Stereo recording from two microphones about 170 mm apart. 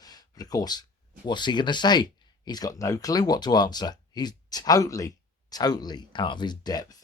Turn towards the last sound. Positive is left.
turn(degrees=25)  # may be behind; listen again after turning